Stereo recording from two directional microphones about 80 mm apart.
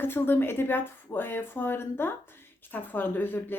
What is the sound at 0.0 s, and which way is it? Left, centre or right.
A woman's voice, left.